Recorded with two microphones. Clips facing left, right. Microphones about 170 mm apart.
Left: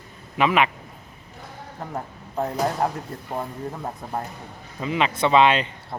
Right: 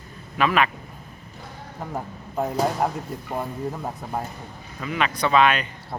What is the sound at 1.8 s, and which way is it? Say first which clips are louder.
Speech: right 1 dB; 5° right (ahead or behind).